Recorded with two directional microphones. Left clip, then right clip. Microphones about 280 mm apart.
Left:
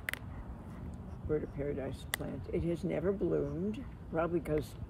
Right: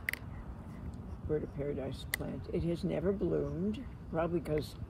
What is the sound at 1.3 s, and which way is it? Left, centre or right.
Speech, left.